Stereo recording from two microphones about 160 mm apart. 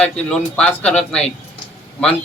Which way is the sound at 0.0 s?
5° left (ahead or behind).